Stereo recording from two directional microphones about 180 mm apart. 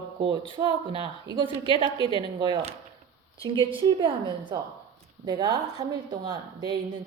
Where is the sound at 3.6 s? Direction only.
30° right (ahead or behind).